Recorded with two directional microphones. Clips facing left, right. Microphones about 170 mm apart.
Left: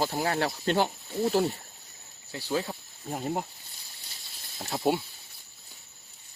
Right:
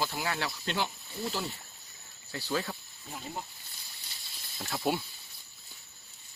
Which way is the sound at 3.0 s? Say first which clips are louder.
Left 11 dB; 50° left (ahead or behind).